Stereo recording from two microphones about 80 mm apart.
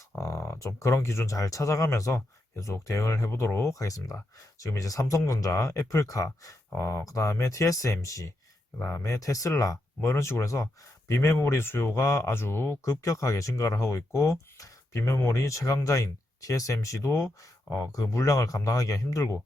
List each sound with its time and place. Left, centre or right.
0.2 s speech: left